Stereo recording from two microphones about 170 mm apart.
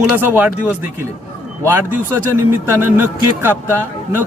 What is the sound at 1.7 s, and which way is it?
Speech, 15° right (ahead or behind).